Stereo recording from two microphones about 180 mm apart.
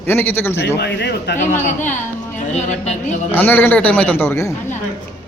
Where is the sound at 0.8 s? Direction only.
70° left (ahead or behind).